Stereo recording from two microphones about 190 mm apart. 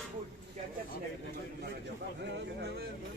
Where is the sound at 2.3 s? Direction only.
60° right (ahead or behind).